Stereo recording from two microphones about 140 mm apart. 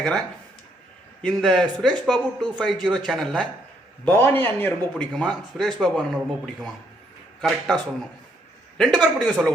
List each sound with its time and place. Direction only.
0.0 s speech: 5° left (ahead or behind)
4.0 s a man's voice: 15° left (ahead or behind)
8.8 s a man's voice: 5° left (ahead or behind)